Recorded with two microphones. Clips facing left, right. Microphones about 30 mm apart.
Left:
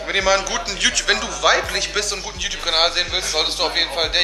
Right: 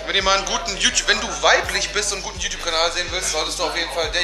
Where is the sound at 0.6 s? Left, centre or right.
Centre.